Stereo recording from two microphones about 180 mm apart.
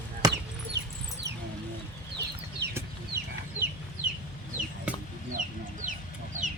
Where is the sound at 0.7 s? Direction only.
70° right (ahead or behind).